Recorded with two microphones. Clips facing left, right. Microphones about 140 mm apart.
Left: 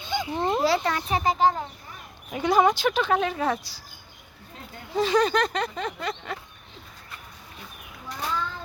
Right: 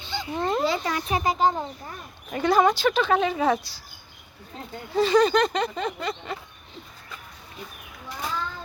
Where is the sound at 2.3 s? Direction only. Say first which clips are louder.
Right 1 dB; 10° left (ahead or behind).